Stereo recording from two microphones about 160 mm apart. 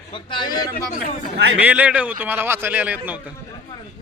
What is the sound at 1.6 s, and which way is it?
Speech, 10° right (ahead or behind).